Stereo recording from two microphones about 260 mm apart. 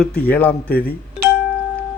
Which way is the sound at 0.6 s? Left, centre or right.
Left.